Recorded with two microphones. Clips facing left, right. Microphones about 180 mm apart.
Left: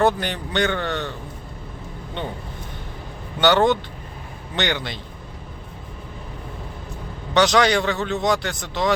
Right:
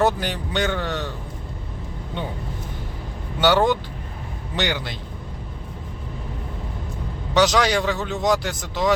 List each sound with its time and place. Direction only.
0.0 s speech: 5° right (ahead or behind)
3.4 s a man's voice: 5° right (ahead or behind)
7.3 s speech: 5° right (ahead or behind)